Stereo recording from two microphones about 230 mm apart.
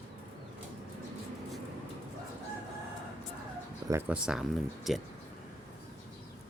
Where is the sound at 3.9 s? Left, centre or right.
Centre.